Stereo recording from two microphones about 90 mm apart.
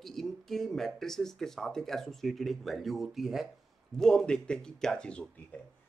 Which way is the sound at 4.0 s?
5° left (ahead or behind).